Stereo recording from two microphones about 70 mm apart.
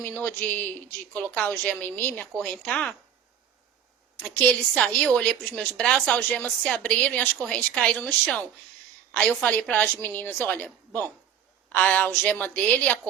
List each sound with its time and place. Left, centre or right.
0.0 s a woman's voice: left
4.2 s a woman's voice: centre
9.4 s a woman's voice: left